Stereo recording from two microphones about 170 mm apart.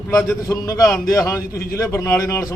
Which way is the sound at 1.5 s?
65° left (ahead or behind).